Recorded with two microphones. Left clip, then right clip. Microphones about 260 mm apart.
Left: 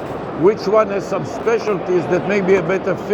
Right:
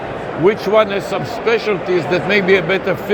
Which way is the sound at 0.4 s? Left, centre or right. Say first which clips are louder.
Right 1 dB; right.